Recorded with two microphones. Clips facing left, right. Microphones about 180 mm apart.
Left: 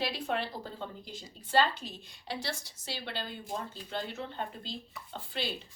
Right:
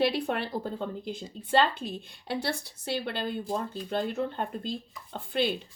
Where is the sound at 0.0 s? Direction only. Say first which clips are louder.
Right 6 dB; 60° right (ahead or behind).